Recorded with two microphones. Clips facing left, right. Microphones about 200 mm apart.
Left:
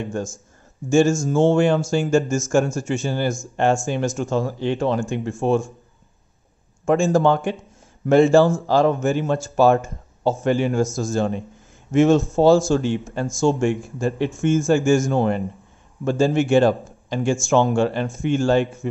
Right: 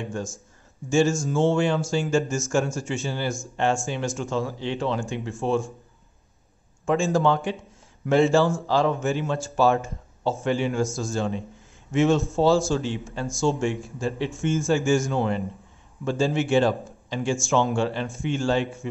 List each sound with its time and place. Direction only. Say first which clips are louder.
0.0 s a man's voice: left 4 dB; 45° left (ahead or behind)
6.9 s a man's voice: left 4 dB; 50° left (ahead or behind)